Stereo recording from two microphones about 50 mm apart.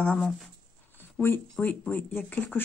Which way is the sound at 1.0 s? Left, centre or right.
Left.